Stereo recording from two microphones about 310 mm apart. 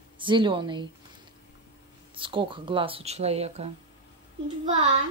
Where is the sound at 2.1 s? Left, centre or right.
Centre.